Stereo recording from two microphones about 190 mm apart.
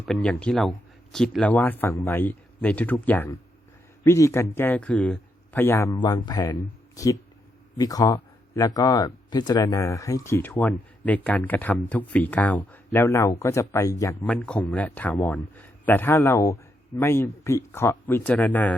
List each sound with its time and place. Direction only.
0.0 s speech: 5° left (ahead or behind)
14.3 s speech: 5° left (ahead or behind)